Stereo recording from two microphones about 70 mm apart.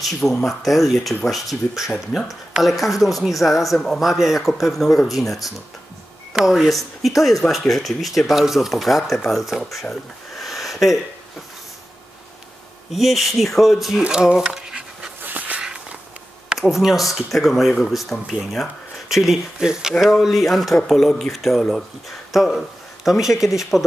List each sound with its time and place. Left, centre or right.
0.0 s speech: centre
9.8 s a sound: centre
12.9 s speech: centre
14.0 s pant: centre
15.2 s a sound: right
15.6 s walk: centre
16.5 s speech: centre